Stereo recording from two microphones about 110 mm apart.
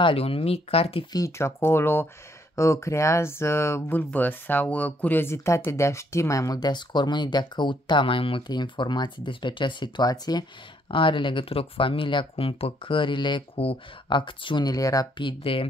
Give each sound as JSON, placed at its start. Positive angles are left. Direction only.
{"t": 0.0, "sound": "speech", "side_deg": 55}
{"t": 1.1, "sound": "speech", "side_deg": 25}
{"t": 10.9, "sound": "speech", "side_deg": 50}
{"t": 15.1, "sound": "speech", "side_deg": 50}